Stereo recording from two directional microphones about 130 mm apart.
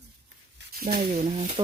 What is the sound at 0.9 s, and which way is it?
Speech, 65° right (ahead or behind).